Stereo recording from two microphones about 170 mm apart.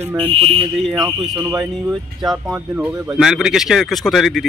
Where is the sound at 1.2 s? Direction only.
5° right (ahead or behind).